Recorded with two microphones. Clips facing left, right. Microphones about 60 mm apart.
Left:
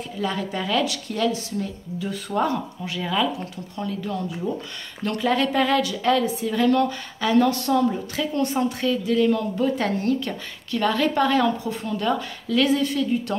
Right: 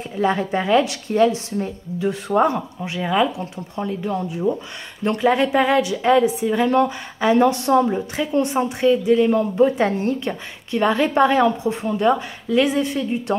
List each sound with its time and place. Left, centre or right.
0.1 s speech: right